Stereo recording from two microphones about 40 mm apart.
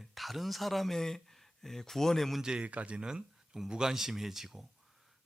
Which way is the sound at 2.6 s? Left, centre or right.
Right.